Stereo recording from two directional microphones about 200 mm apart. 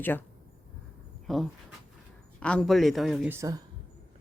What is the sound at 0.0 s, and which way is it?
Speech, 10° left (ahead or behind).